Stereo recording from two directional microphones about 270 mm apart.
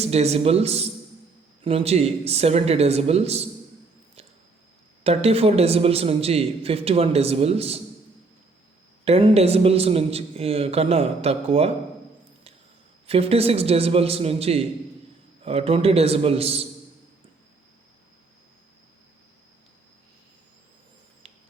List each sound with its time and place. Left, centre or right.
0.0 s a man's voice: right
5.0 s a man's voice: right
9.0 s a man's voice: right
13.1 s a man's voice: right